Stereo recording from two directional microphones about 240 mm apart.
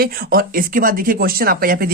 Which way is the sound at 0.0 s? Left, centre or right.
Right.